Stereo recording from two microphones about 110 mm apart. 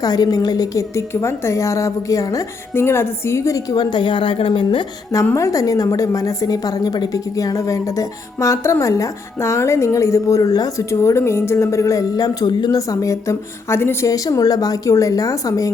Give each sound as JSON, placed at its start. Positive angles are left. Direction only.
{"t": 0.0, "sound": "a woman's voice", "side_deg": 35}
{"t": 5.2, "sound": "a woman's voice", "side_deg": 25}